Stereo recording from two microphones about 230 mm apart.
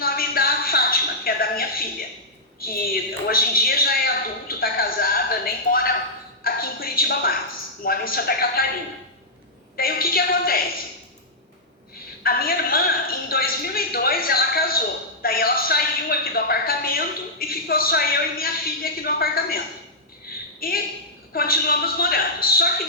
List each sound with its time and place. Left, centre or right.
0.0 s a sound: left
2.6 s a woman's voice: left
9.7 s a woman's voice: left
12.2 s a woman's voice: left
20.6 s a woman's voice: left